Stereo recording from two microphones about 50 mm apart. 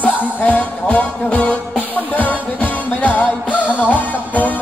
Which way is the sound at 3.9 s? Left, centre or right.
Left.